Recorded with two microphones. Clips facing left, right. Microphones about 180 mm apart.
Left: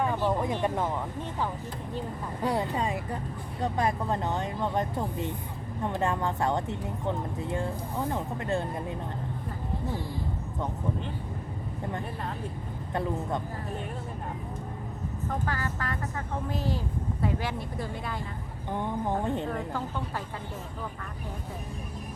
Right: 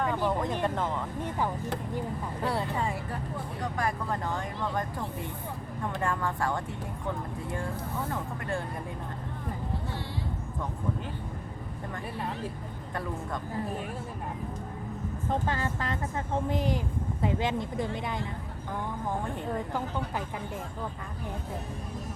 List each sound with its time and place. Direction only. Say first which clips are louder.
0.3 s a sound: left 1 dB; 10° left (ahead or behind)
0.6 s speech: left 1 dB; 10° left (ahead or behind)
2.4 s speech: left 3 dB; 15° left (ahead or behind)
12.9 s speech: left 5 dB; 20° left (ahead or behind)
15.3 s speech: right 3 dB; 25° right (ahead or behind)
18.7 s speech: left 4 dB; 20° left (ahead or behind)